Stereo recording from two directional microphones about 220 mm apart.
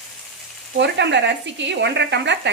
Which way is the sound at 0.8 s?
50° right (ahead or behind).